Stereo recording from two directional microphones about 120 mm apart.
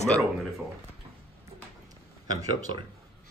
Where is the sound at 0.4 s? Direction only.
Centre (ahead or behind).